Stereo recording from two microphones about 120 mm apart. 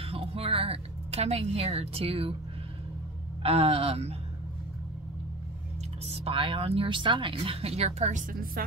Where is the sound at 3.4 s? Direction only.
55° right (ahead or behind).